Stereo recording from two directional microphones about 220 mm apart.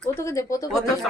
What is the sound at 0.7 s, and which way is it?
Speech, centre (ahead or behind).